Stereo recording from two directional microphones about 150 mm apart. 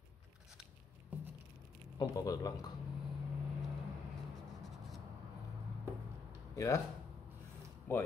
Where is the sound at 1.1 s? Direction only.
10° right (ahead or behind).